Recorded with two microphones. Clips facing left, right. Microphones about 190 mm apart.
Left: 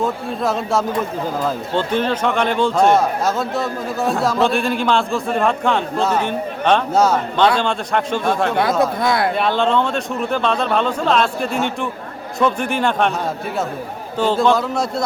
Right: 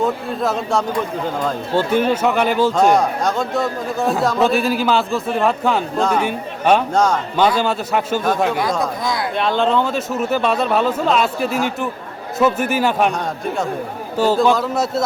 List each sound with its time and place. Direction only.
0.0 s speech: centre (ahead or behind)
6.9 s speech: 5° left (ahead or behind)
7.3 s speech: 5° right (ahead or behind)
9.0 s speech: 60° left (ahead or behind)
9.3 s speech: centre (ahead or behind)
14.2 s speech: 10° right (ahead or behind)